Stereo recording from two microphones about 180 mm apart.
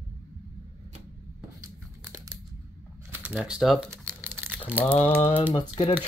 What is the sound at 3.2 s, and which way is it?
Speech, 5° right (ahead or behind).